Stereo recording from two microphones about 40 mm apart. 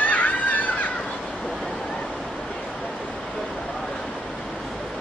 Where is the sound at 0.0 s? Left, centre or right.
Left.